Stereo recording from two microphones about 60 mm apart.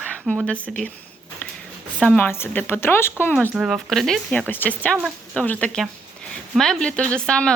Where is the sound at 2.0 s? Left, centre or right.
Left.